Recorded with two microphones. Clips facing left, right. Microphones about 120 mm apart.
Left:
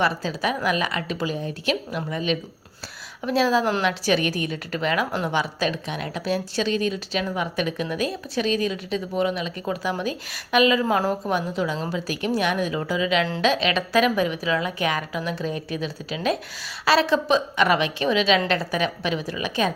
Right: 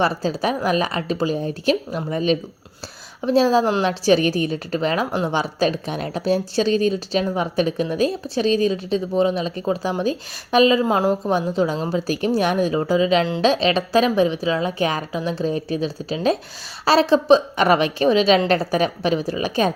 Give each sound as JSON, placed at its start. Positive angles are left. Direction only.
{"t": 0.0, "sound": "a woman's voice", "side_deg": -35}
{"t": 3.6, "sound": "a woman's voice", "side_deg": -20}
{"t": 3.8, "sound": "a woman's voice", "side_deg": -35}